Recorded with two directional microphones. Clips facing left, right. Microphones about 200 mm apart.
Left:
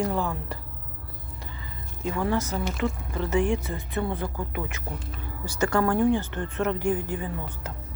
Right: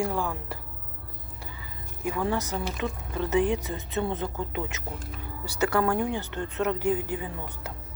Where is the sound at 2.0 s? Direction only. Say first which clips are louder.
Left 1 dB; 15° right (ahead or behind).